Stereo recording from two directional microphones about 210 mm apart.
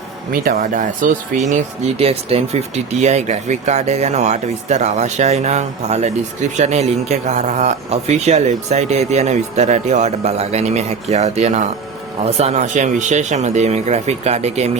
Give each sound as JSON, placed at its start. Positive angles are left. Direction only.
{"t": 0.4, "sound": "speech", "side_deg": -40}
{"t": 2.0, "sound": "speech", "side_deg": -30}